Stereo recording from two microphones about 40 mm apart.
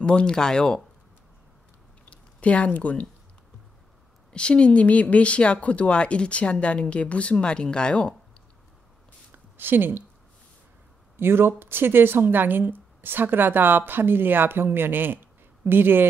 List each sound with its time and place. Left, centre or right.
0.0 s a woman's voice: left
2.0 s speech: left
4.3 s a woman's voice: left
9.3 s a sound: right
11.1 s speech: right